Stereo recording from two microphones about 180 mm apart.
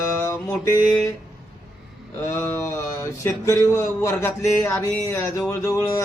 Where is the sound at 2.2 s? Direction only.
15° left (ahead or behind).